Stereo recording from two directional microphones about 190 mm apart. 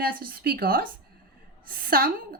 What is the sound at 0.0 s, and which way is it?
Speech, 50° right (ahead or behind).